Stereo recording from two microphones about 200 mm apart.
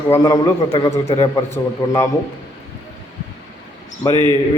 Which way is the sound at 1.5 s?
15° left (ahead or behind).